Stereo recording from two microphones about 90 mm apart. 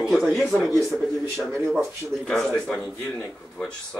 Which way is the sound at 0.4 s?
Centre (ahead or behind).